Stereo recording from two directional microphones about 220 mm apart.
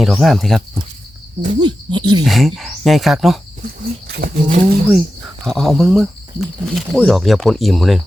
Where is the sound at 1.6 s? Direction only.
20° right (ahead or behind).